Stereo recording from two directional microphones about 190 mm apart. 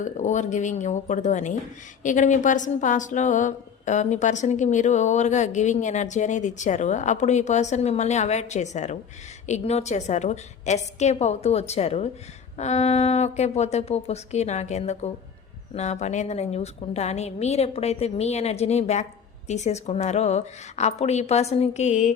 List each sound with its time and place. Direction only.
0.0 s speech: 40° left (ahead or behind)